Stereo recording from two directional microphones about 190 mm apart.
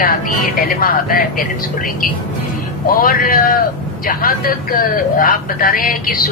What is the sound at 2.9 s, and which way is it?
Speech, 50° left (ahead or behind).